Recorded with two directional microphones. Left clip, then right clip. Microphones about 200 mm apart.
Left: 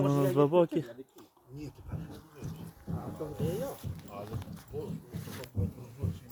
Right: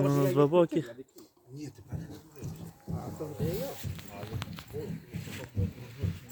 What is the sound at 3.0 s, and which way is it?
Speech, 10° right (ahead or behind).